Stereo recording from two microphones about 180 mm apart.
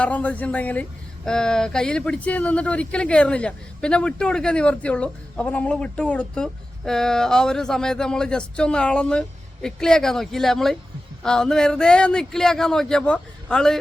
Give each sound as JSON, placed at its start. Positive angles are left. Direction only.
{"t": 0.0, "sound": "speech", "side_deg": 10}